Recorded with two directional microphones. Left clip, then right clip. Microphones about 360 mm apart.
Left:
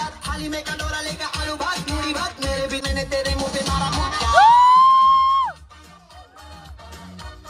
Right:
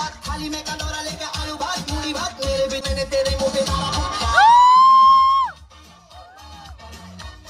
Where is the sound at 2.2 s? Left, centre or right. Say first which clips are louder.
Right 3 dB; right.